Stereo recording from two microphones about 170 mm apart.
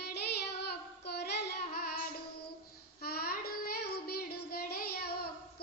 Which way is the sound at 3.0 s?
65° left (ahead or behind).